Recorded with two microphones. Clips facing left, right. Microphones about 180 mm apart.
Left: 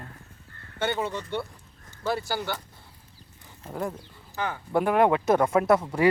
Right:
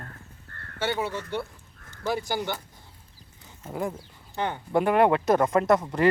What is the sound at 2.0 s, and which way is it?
Speech, 15° right (ahead or behind).